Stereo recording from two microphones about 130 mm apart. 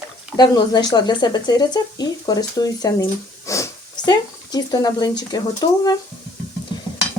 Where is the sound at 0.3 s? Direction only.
35° left (ahead or behind).